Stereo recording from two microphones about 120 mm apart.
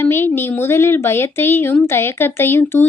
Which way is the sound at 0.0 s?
20° left (ahead or behind).